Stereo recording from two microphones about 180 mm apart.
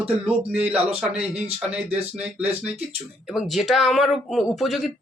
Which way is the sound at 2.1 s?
10° right (ahead or behind).